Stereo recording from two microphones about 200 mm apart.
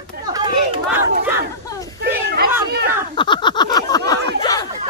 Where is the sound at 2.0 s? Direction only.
55° right (ahead or behind).